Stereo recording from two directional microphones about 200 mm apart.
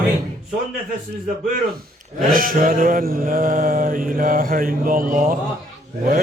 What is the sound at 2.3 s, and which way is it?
Mantra, 45° right (ahead or behind).